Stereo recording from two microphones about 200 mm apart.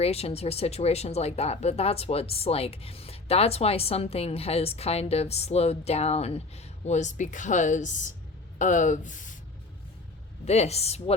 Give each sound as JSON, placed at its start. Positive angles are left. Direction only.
{"t": 0.0, "sound": "speech", "side_deg": 30}
{"t": 10.4, "sound": "speech", "side_deg": 30}